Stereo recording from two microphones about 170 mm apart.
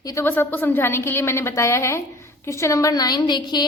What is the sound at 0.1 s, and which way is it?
A woman's voice, 15° left (ahead or behind).